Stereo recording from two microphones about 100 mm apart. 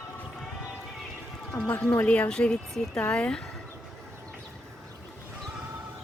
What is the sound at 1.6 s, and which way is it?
Speech, 15° left (ahead or behind).